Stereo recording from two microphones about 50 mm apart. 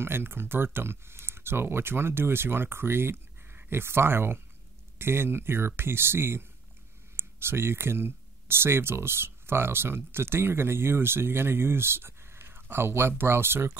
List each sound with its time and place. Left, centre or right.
0.0 s speech: right